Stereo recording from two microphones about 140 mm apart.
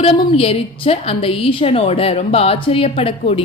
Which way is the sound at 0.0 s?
40° left (ahead or behind).